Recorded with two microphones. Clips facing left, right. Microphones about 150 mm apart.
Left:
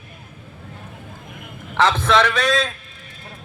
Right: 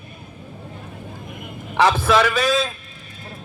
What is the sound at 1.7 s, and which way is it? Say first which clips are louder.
A man's voice: right 1 dB; 10° right (ahead or behind).